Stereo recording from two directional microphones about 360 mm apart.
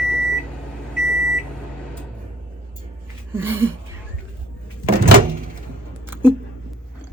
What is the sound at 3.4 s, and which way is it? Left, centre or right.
Speech, centre.